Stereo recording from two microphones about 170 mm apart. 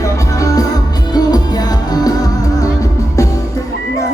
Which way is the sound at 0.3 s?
20° left (ahead or behind).